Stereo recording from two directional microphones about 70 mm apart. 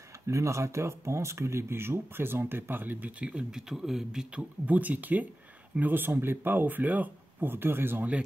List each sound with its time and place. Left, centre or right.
0.3 s a man's voice: right; by 4.5 s centre
4.6 s speech: right